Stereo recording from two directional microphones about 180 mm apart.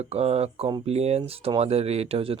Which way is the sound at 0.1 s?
35° right (ahead or behind).